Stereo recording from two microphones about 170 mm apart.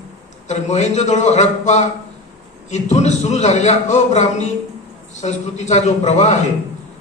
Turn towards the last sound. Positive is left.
turn(degrees=40)  # may be behind; listen again after turning